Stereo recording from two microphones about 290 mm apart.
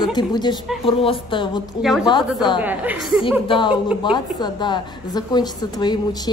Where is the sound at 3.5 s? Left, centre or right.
Centre.